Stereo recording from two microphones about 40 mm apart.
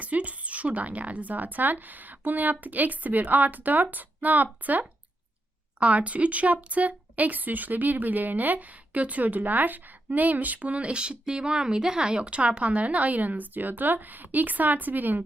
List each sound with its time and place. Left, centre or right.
0.0 s speech: right